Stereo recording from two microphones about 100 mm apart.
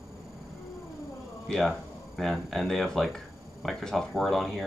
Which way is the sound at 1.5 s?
5° left (ahead or behind).